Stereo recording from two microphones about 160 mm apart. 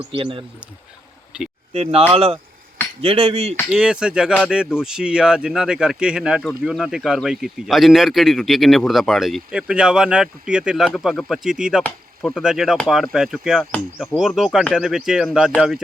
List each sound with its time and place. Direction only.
0.1 s cutlery: 30° right (ahead or behind)
1.3 s speech: 5° right (ahead or behind)
1.7 s cutlery: 40° right (ahead or behind)
3.7 s speech: 5° right (ahead or behind)
14.2 s speech: centre (ahead or behind)